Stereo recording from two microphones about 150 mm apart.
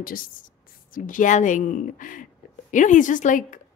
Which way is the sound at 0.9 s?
60° left (ahead or behind).